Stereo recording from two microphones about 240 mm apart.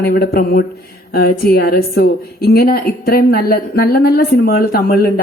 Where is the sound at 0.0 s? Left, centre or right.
Left.